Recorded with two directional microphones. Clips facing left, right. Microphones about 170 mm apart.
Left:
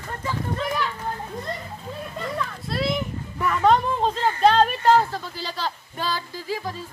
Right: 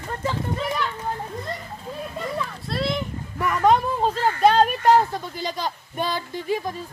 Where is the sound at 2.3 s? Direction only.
Centre (ahead or behind).